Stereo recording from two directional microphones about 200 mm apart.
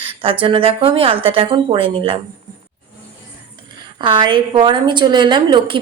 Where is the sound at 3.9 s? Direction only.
25° right (ahead or behind).